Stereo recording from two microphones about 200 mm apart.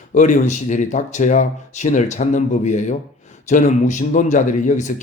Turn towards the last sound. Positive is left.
turn(degrees=40)  # may be behind; listen again after turning